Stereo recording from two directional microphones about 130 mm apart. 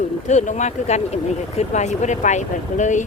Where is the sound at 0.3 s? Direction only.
70° left (ahead or behind).